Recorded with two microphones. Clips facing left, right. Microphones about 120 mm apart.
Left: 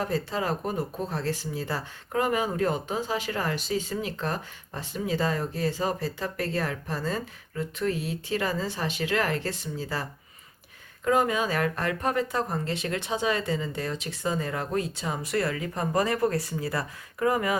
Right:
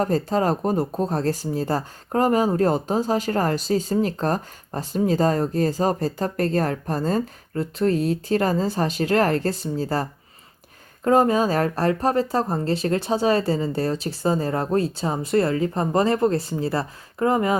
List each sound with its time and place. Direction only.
0.0 s speech: 40° right (ahead or behind)